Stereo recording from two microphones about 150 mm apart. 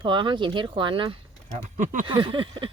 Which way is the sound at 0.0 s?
30° right (ahead or behind).